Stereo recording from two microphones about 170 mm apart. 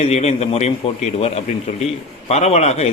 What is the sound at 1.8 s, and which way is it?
Speech, 40° left (ahead or behind).